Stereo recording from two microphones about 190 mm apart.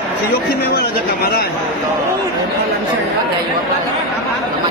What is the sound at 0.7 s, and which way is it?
Speech, 55° left (ahead or behind).